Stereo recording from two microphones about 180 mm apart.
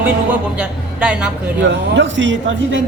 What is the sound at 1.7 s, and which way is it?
Speech, 85° right.